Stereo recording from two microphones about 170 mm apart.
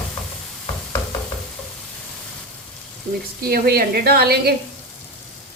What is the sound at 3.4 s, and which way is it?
A woman's voice, 65° right (ahead or behind).